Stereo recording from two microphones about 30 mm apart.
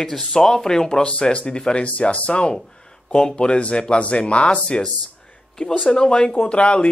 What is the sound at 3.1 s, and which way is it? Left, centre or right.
Speech, left.